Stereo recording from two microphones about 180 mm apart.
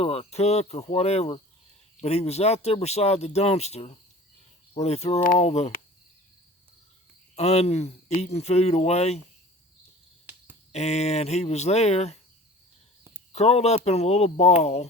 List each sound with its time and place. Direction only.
0.0 s speech: 35° left (ahead or behind)
5.2 s speech: 50° left (ahead or behind)
5.5 s speech: 35° left (ahead or behind)
7.3 s speech: 35° left (ahead or behind)
10.2 s cricket: 10° right (ahead or behind)
10.7 s speech: 35° left (ahead or behind)
13.3 s speech: 35° left (ahead or behind)